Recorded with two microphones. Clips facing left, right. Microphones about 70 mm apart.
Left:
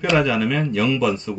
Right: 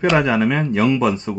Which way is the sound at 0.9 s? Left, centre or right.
Right.